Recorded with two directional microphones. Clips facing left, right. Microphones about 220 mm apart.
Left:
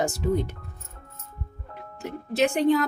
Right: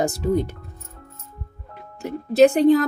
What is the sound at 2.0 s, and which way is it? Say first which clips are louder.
Speech: right 9 dB; 35° right (ahead or behind).